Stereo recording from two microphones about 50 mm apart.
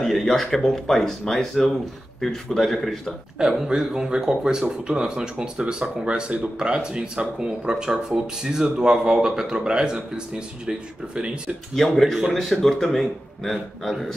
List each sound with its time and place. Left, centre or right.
0.0 s speech: centre
3.3 s speech: centre
11.7 s speech: centre